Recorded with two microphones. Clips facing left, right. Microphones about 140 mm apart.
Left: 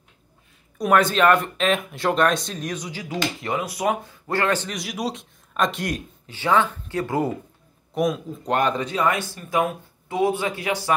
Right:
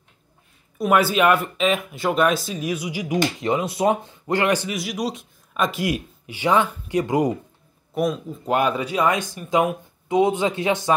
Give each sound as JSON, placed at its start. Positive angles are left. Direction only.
{"t": 0.7, "sound": "speech", "side_deg": -5}
{"t": 4.7, "sound": "speech", "side_deg": 0}
{"t": 7.9, "sound": "speech", "side_deg": 0}